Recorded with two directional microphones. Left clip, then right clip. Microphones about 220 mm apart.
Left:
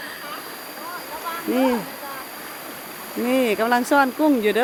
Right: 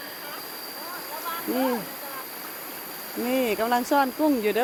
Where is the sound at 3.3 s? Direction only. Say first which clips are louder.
Left 5 dB; 10° left (ahead or behind).